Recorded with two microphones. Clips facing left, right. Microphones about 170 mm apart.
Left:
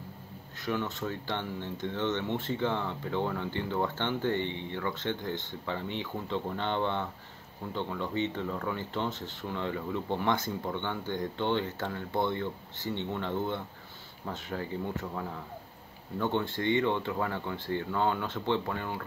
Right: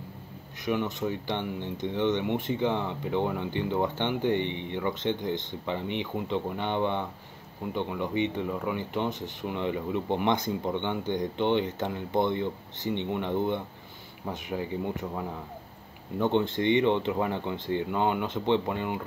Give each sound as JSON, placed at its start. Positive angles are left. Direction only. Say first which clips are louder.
{"t": 0.7, "sound": "speech", "louder": "right 4 dB", "side_deg": -15}